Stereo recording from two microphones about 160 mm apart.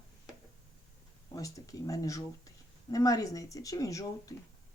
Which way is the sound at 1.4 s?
20° left (ahead or behind).